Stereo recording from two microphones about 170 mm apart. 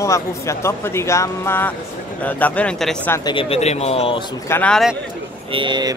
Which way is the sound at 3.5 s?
40° left (ahead or behind).